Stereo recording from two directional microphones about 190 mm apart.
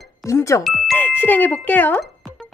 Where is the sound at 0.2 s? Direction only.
15° left (ahead or behind).